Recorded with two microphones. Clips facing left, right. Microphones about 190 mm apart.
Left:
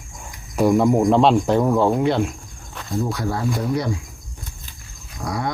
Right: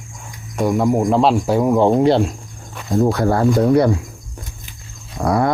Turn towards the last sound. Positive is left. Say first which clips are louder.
# right 9 dB
turn(degrees=-60)  # may be behind; listen again after turning